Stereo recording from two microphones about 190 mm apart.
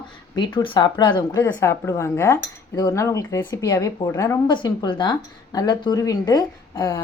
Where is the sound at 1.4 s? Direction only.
15° left (ahead or behind).